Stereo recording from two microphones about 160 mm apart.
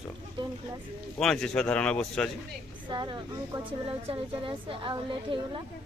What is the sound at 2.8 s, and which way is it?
A woman's voice, 30° right (ahead or behind).